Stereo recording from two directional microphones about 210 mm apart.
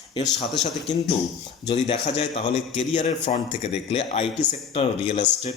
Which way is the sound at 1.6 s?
30° left (ahead or behind).